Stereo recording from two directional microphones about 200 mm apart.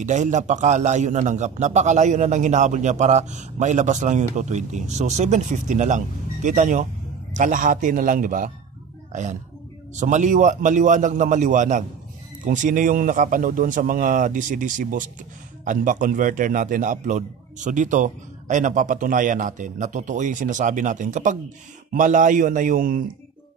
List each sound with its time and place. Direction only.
0.0 s a man's voice: 40° right (ahead or behind)